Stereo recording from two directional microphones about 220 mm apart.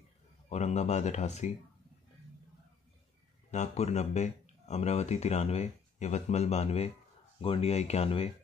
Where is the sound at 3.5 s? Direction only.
30° left (ahead or behind).